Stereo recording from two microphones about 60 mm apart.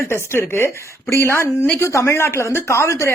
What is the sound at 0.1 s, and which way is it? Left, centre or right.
A woman's voice, left.